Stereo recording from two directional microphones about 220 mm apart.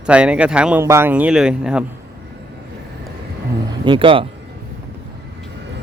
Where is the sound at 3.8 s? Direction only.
20° right (ahead or behind).